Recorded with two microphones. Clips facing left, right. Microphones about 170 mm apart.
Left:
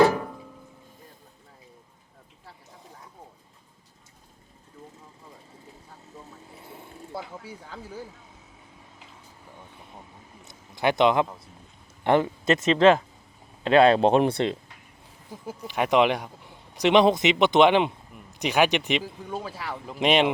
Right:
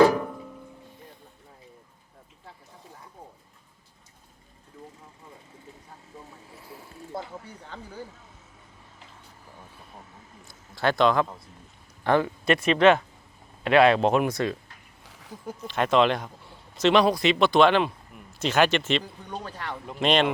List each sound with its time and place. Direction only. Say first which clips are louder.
7.1 s speech: right 1 dB; 5° left (ahead or behind)
10.4 s a sound: left 1 dB; 20° left (ahead or behind)
12.0 s speech: left 1 dB; 20° left (ahead or behind)
15.0 s a sound: right 2 dB; 90° right
15.4 s speech: even; 10° left (ahead or behind)
19.0 s speech: left 3 dB; 5° left (ahead or behind)
20.0 s speech: left 1 dB; 15° left (ahead or behind)